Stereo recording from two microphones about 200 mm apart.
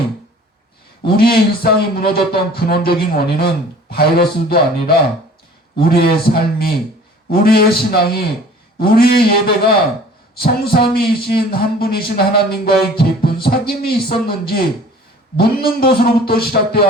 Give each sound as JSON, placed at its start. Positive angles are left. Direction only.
{"t": 1.0, "sound": "speech", "side_deg": 50}